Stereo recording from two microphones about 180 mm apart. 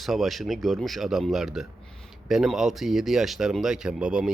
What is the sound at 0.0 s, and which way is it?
Speech, centre (ahead or behind).